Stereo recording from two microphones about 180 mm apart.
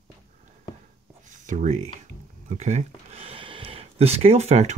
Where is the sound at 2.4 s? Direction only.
40° right (ahead or behind).